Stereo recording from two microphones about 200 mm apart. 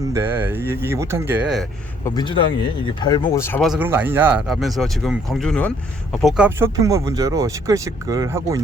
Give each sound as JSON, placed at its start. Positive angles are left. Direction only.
{"t": 0.1, "sound": "speech", "side_deg": -10}
{"t": 2.0, "sound": "speech", "side_deg": 20}
{"t": 3.6, "sound": "speech", "side_deg": 0}
{"t": 6.7, "sound": "speech", "side_deg": -15}